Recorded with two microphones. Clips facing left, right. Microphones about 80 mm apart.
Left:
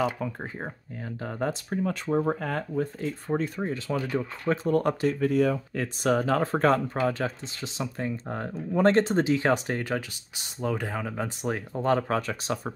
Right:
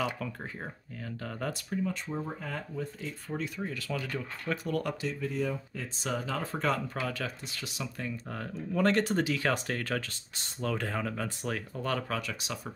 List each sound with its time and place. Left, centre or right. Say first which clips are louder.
0.0 s speech: left 6 dB; left
1.7 s speech: left 6 dB; left
5.0 s speech: left 9 dB; left
7.1 s speech: left 7 dB; left